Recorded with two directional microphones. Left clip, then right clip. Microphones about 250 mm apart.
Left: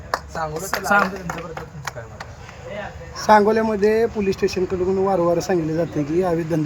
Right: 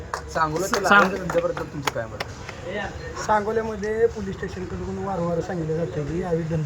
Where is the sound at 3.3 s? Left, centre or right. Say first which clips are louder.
Left 8 dB; left.